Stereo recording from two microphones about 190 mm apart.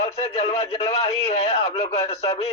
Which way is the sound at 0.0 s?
35° left (ahead or behind).